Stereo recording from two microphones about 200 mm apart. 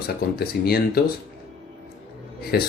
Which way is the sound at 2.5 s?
50° left (ahead or behind).